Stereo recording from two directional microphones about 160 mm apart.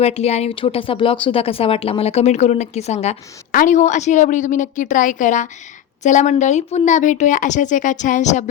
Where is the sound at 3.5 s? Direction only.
55° left (ahead or behind).